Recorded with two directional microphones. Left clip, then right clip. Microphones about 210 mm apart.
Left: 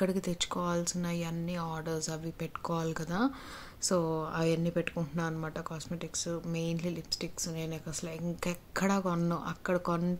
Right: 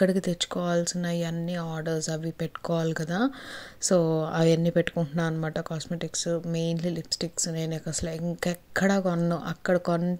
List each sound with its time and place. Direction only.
0.0 s speech: 15° right (ahead or behind)
8.5 s speech: 15° right (ahead or behind)